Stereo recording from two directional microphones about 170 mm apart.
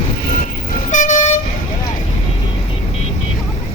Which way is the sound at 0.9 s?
45° left (ahead or behind).